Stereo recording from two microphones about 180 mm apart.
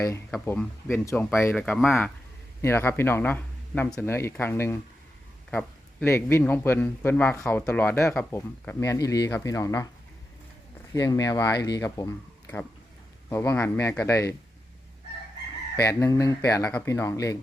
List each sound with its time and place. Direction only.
0.3 s speech: 5° left (ahead or behind)
10.9 s speech: 20° left (ahead or behind)
13.3 s speech: 15° left (ahead or behind)
15.7 s speech: 15° left (ahead or behind)